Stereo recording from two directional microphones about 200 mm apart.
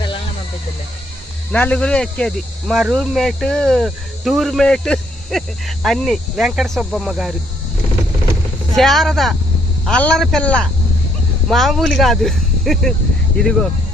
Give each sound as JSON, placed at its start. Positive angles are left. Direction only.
{"t": 1.5, "sound": "speech", "side_deg": 5}
{"t": 8.7, "sound": "speech", "side_deg": 0}